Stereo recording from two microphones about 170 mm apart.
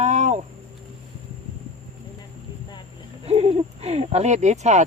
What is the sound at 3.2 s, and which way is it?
Speech, 35° right (ahead or behind).